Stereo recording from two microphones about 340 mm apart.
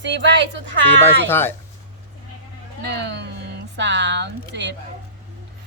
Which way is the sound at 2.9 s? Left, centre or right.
Right.